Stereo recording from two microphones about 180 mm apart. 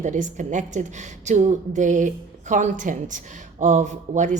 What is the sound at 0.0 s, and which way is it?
Speech, 45° right (ahead or behind).